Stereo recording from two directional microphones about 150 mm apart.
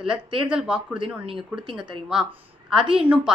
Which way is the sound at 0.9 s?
35° right (ahead or behind).